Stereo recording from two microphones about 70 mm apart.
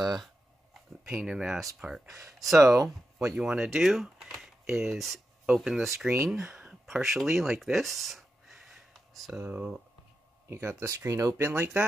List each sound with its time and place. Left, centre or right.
0.0 s speech: centre
6.2 s a sound: centre
9.4 s speech: right
10.5 s speech: right